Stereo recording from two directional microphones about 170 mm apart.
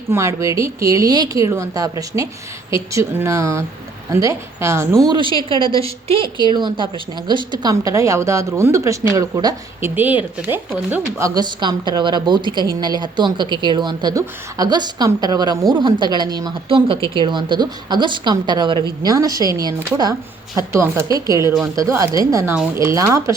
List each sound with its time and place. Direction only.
0.1 s a woman's voice: 15° right (ahead or behind)
9.9 s speech: 10° right (ahead or behind)
10.9 s a woman's voice: 20° right (ahead or behind)